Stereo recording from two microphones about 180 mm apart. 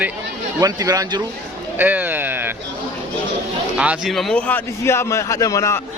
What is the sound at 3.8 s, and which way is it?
A man's voice, 5° right (ahead or behind).